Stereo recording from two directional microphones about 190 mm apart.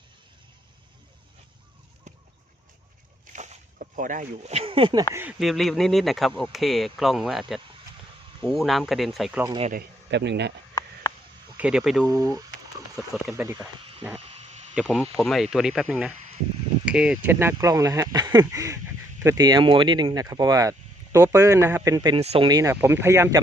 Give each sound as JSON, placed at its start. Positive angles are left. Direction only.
{"t": 3.3, "sound": "speech", "side_deg": -40}
{"t": 5.1, "sound": "speech", "side_deg": -5}
{"t": 9.5, "sound": "speech", "side_deg": -30}
{"t": 9.7, "sound": "speech", "side_deg": -65}
{"t": 11.5, "sound": "speech", "side_deg": -5}
{"t": 12.0, "sound": "speech", "side_deg": -20}
{"t": 14.8, "sound": "speech", "side_deg": -5}
{"t": 22.2, "sound": "speech", "side_deg": -35}
{"t": 22.4, "sound": "speech", "side_deg": -20}